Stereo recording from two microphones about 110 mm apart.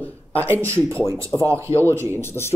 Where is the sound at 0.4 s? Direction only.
15° left (ahead or behind).